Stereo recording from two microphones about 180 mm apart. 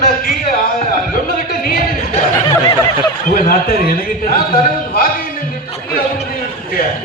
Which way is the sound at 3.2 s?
55° left (ahead or behind).